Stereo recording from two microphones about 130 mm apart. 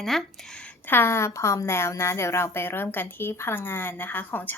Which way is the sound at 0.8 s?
15° left (ahead or behind).